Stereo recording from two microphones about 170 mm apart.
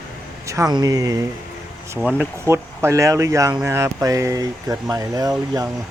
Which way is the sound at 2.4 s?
15° right (ahead or behind).